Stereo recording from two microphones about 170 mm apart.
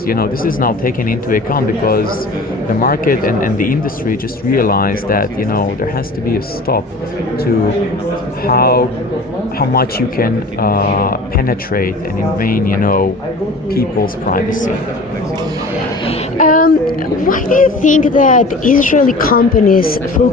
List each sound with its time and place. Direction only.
0.1 s speech: 55° left (ahead or behind)
8.4 s speech: 60° left (ahead or behind)
16.4 s speech: 55° left (ahead or behind)